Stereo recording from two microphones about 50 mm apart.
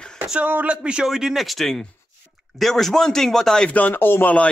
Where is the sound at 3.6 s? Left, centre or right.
Left.